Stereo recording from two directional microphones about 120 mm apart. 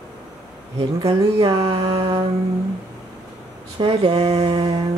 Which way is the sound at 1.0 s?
50° right (ahead or behind).